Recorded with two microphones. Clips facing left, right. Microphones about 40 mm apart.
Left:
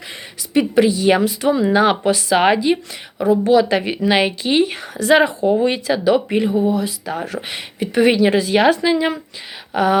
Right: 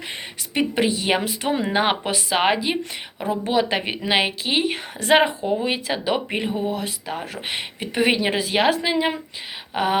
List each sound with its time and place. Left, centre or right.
0.5 s speech: right
2.3 s speech: centre
3.2 s speech: right
4.9 s speech: right
5.6 s speech: centre
6.7 s speech: right
7.4 s speech: right